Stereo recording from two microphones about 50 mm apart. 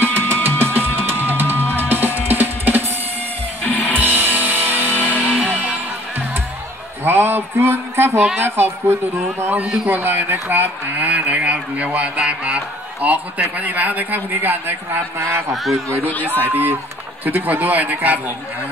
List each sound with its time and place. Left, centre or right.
0.0 s music: right
3.6 s music: left
3.9 s music: right
5.1 s music: left
5.4 s music: right
7.1 s a sound: right
8.4 s speech: right
9.8 s speech: right
15.1 s speech: right
15.5 s a man's voice: centre
16.4 s speech: right